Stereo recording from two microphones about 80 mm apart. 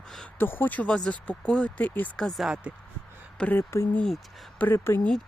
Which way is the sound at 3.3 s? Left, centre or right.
Centre.